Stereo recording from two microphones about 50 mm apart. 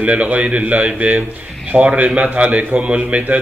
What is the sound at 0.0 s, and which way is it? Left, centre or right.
Speech, right.